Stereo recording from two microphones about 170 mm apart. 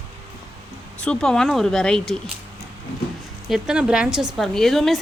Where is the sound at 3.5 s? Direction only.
5° right (ahead or behind).